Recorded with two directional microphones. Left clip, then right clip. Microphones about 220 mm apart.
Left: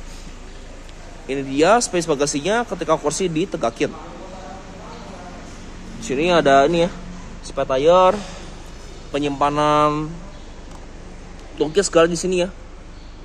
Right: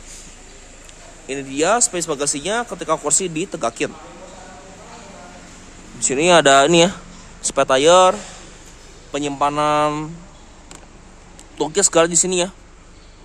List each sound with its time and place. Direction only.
1.2 s speech: 10° right (ahead or behind)
5.9 s speech: 20° right (ahead or behind)
11.5 s speech: 20° right (ahead or behind)